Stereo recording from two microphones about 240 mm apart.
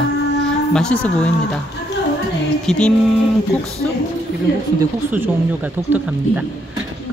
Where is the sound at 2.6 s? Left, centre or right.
Centre.